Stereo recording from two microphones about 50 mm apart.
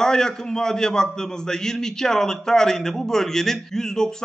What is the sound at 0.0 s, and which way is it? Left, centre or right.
A man's voice, centre.